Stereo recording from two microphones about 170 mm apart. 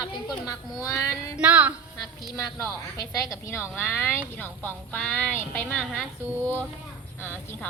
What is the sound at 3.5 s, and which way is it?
Speech, 15° left (ahead or behind).